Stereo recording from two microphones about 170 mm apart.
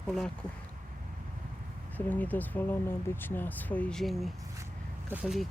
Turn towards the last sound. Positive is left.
turn(degrees=-5)  # may be behind; listen again after turning